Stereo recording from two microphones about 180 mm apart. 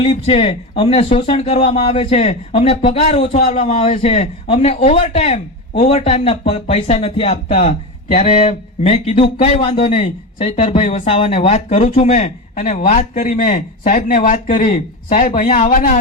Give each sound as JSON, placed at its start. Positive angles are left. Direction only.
{"t": 0.0, "sound": "speech", "side_deg": 30}
{"t": 15.7, "sound": "speech", "side_deg": 50}